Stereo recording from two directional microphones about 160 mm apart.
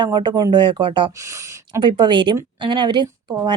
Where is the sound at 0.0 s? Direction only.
25° right (ahead or behind).